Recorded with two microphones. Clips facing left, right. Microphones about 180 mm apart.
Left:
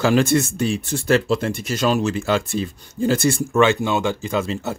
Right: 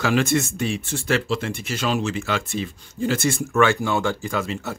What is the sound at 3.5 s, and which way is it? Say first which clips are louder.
Speech: left 2 dB; 20° left (ahead or behind).